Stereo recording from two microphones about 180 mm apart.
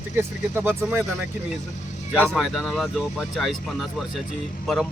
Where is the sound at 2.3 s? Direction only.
Centre (ahead or behind).